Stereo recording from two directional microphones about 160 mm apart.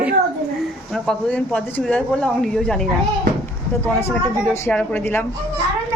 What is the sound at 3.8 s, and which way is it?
A woman's voice, 15° left (ahead or behind).